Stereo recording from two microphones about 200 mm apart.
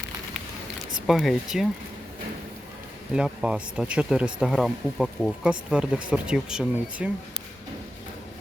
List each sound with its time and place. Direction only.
1.0 s speech: centre (ahead or behind)
3.2 s speech: 5° right (ahead or behind)